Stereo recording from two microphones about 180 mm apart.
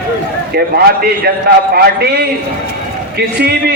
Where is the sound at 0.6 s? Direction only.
60° right (ahead or behind).